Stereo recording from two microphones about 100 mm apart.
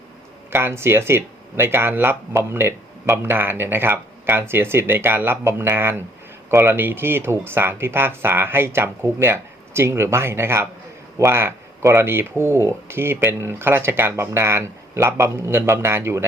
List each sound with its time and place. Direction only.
0.5 s speech: 25° right (ahead or behind)